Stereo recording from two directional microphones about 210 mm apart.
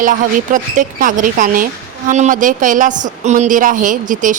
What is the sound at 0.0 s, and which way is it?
Speech, 40° right (ahead or behind).